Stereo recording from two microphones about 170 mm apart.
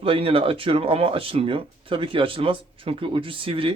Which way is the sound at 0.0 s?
35° right (ahead or behind).